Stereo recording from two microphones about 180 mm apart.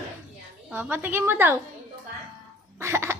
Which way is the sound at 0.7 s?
10° right (ahead or behind).